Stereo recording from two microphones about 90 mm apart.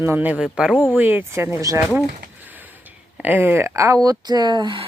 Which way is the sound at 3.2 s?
20° right (ahead or behind).